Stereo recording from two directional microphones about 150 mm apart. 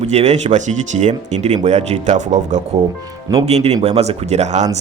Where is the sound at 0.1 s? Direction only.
50° right (ahead or behind).